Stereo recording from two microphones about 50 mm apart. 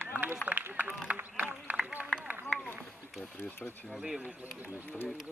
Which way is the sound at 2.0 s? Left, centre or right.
Right.